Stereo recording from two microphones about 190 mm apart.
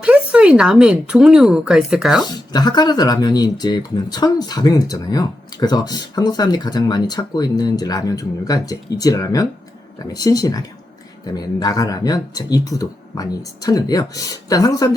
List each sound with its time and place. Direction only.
0.0 s speech: 5° right (ahead or behind)
2.2 s speech: 20° left (ahead or behind)